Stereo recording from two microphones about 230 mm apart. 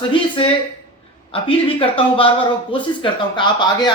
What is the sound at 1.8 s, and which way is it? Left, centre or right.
Speech, left.